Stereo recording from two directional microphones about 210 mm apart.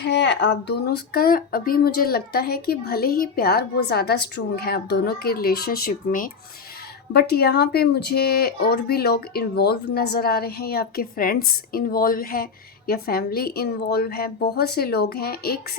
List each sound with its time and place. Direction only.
0.0 s speech: 55° left (ahead or behind)